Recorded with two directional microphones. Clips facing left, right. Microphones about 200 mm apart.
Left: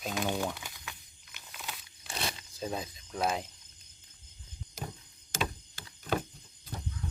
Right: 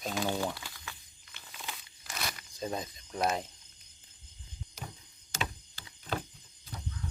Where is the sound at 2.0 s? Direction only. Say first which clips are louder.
Left 2 dB; 30° left (ahead or behind).